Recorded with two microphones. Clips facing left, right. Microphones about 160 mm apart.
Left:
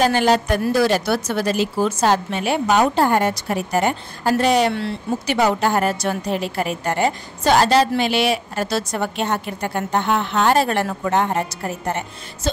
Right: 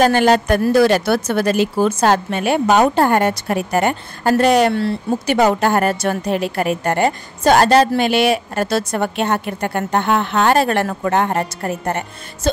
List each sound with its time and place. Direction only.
0.0 s speech: 55° right (ahead or behind)